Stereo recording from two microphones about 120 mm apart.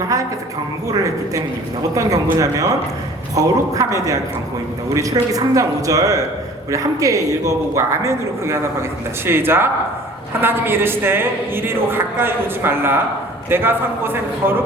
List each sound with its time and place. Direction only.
0.9 s a woman's voice: 30° right (ahead or behind)